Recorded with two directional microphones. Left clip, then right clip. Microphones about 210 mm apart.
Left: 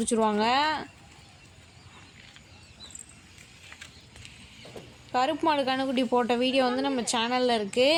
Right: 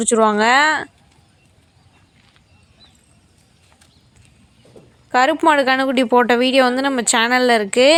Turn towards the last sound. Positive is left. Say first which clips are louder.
# right 11 dB
turn(degrees=-25)  # may be behind; listen again after turning